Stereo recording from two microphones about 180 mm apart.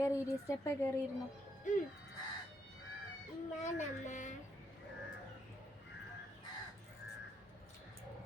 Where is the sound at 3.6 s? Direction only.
40° left (ahead or behind).